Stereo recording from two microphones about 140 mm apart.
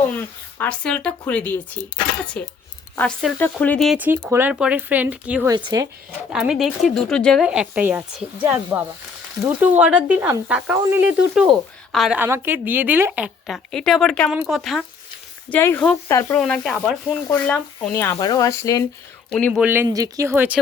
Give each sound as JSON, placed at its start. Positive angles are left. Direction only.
{"t": 0.1, "sound": "speech", "side_deg": 10}
{"t": 3.9, "sound": "speech", "side_deg": -10}
{"t": 5.5, "sound": "speech", "side_deg": -30}
{"t": 6.1, "sound": "speech", "side_deg": -5}
{"t": 7.4, "sound": "a woman's voice", "side_deg": -5}
{"t": 12.1, "sound": "speech", "side_deg": -15}
{"t": 13.7, "sound": "speech", "side_deg": 5}
{"t": 15.4, "sound": "speech", "side_deg": 15}
{"t": 16.4, "sound": "speech", "side_deg": 0}
{"t": 19.3, "sound": "speech", "side_deg": 5}
{"t": 19.5, "sound": "speech", "side_deg": -10}
{"t": 19.9, "sound": "speech", "side_deg": -25}